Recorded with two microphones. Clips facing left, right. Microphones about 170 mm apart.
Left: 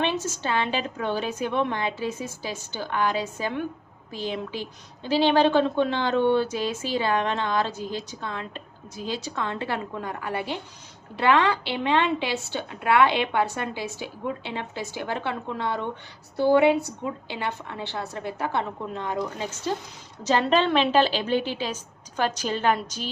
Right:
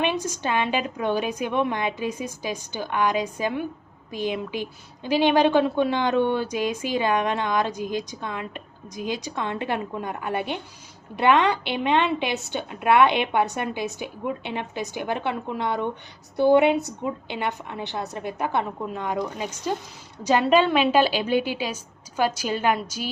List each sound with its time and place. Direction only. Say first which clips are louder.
0.0 s a woman's voice: right 1 dB; 15° right (ahead or behind)